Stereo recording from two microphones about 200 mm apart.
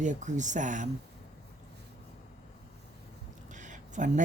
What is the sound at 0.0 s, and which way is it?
Speech, 35° right (ahead or behind).